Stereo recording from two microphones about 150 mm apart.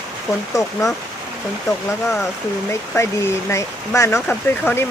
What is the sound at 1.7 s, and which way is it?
Speech, 20° left (ahead or behind).